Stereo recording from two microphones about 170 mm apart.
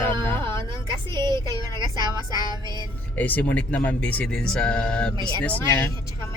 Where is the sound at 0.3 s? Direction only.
30° right (ahead or behind).